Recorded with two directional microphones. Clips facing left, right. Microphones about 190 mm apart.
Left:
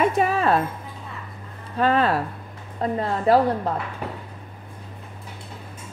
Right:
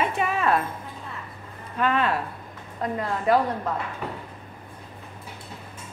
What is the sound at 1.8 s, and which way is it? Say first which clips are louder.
A woman's voice: left 4 dB; 35° left (ahead or behind).